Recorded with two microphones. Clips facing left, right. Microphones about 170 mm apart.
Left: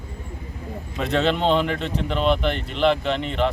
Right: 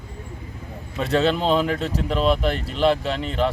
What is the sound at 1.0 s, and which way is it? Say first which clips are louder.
Speech: right 1 dB; 35° right (ahead or behind).